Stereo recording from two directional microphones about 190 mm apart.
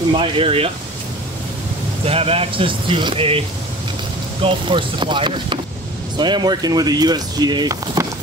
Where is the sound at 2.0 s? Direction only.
30° right (ahead or behind).